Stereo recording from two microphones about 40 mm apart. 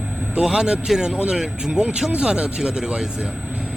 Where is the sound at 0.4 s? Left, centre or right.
Right.